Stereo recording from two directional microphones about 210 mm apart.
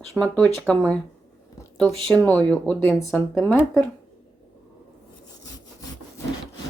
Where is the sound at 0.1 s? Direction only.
5° left (ahead or behind).